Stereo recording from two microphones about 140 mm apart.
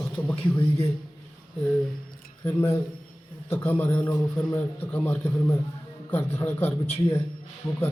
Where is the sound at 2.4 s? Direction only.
20° left (ahead or behind).